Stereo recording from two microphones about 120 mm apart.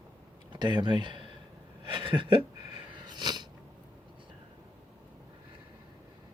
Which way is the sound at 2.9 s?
35° right (ahead or behind).